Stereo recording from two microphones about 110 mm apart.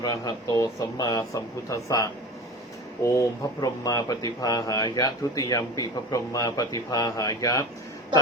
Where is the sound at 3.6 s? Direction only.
35° left (ahead or behind).